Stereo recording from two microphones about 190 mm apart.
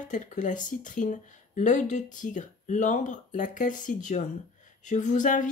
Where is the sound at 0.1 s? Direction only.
40° left (ahead or behind).